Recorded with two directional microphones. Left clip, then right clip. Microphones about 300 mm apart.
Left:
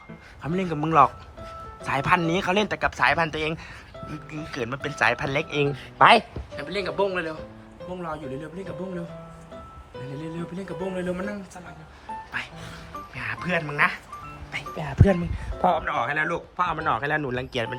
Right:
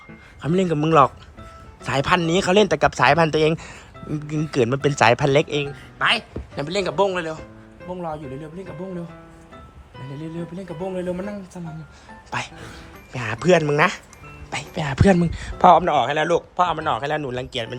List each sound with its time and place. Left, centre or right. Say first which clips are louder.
0.4 s a man's voice: right 6 dB; centre
15.8 s a man's voice: right 6 dB; centre